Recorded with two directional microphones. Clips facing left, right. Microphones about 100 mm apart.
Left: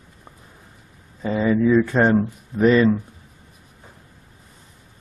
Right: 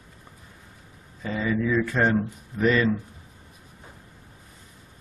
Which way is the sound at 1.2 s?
30° left (ahead or behind).